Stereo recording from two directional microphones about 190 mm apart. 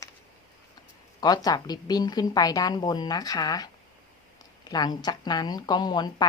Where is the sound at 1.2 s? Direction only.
20° left (ahead or behind).